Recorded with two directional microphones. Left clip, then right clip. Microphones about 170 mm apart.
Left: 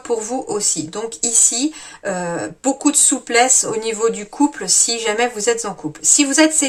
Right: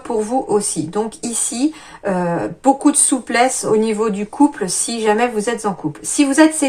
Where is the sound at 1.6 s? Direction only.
30° left (ahead or behind).